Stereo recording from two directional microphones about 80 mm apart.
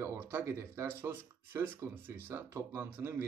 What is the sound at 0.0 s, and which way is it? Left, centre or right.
Speech, right.